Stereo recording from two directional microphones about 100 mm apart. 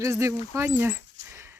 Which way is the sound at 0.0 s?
30° right (ahead or behind).